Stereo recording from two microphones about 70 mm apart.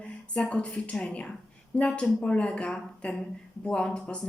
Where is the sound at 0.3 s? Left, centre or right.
Centre.